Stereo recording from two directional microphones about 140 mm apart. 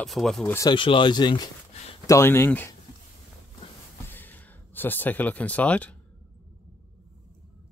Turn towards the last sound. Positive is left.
turn(degrees=10)  # may be behind; listen again after turning